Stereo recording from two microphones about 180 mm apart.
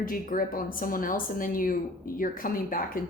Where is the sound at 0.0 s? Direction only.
50° left (ahead or behind).